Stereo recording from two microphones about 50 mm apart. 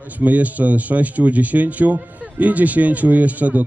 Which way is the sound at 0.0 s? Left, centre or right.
Right.